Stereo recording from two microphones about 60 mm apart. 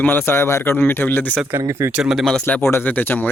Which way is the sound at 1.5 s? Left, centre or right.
Right.